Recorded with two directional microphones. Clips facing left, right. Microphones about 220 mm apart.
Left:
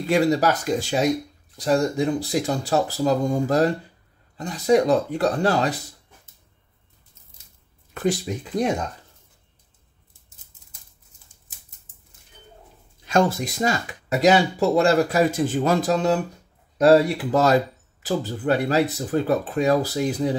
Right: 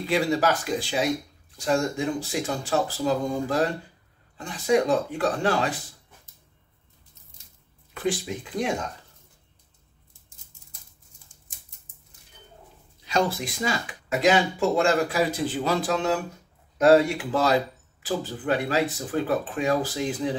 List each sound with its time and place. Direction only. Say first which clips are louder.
0.0 s speech: left 4 dB; 45° left (ahead or behind)
7.9 s speech: left 4 dB; 45° left (ahead or behind)
13.0 s speech: left 5 dB; 45° left (ahead or behind)